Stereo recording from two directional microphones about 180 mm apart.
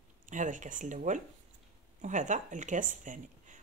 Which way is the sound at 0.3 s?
45° right (ahead or behind).